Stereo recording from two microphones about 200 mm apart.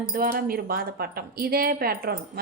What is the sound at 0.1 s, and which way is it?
Speech, 45° right (ahead or behind).